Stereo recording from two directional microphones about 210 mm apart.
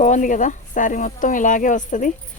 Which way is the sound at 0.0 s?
35° left (ahead or behind).